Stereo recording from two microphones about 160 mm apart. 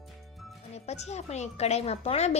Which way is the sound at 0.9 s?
45° left (ahead or behind).